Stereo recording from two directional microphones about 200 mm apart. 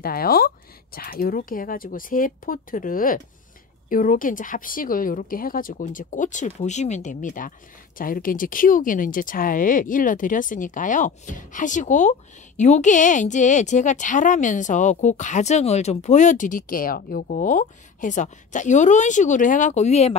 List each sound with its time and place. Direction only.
0.0 s a woman's voice: 50° left (ahead or behind); by 20.2 s 30° left (ahead or behind)